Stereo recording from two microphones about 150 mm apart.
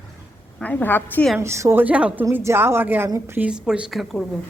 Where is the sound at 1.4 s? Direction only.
20° right (ahead or behind).